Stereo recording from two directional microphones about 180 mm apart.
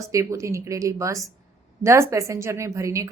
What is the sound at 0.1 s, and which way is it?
A woman's voice, 15° right (ahead or behind).